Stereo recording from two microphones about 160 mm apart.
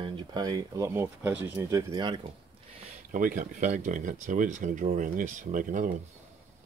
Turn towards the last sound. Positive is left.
turn(degrees=-55)  # may be behind; listen again after turning